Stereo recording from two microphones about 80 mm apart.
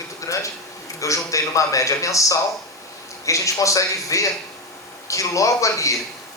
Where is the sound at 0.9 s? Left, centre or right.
Left.